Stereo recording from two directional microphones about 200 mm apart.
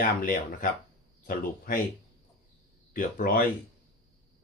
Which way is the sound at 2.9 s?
45° left (ahead or behind).